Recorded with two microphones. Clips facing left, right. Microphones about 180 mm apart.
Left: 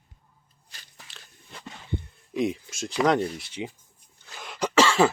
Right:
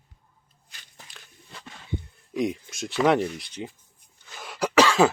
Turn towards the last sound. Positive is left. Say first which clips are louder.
# right 1 dB
turn(degrees=-15)  # may be behind; listen again after turning